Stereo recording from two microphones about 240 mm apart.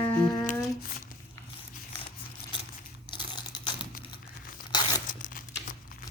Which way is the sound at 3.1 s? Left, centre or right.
Centre.